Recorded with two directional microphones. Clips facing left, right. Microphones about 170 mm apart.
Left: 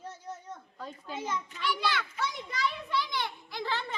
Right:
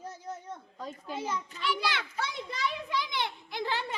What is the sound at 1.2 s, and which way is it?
Speech, 5° right (ahead or behind).